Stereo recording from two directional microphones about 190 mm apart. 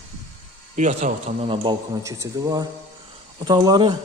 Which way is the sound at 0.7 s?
40° right (ahead or behind).